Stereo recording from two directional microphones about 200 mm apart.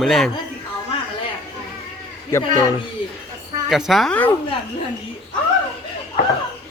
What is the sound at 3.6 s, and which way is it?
Speech, centre (ahead or behind).